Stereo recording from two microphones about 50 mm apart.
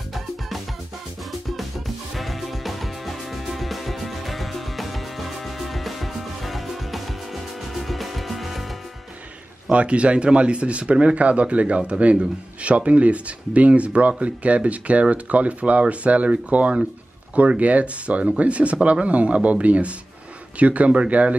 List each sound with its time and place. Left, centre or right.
2.1 s music: centre
9.7 s a man's voice: right